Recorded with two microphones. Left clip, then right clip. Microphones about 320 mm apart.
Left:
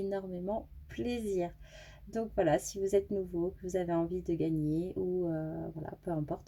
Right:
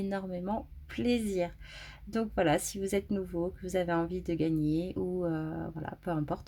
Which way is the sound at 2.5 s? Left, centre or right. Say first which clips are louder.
Left 1 dB; right.